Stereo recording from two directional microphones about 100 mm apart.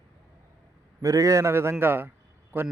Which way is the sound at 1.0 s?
35° right (ahead or behind).